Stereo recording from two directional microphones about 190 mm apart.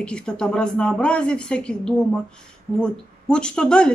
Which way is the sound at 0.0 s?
5° left (ahead or behind).